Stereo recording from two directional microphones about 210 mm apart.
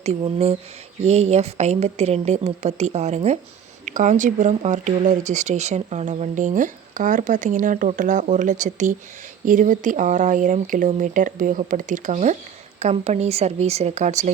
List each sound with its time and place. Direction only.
0.0 s speech: 30° right (ahead or behind)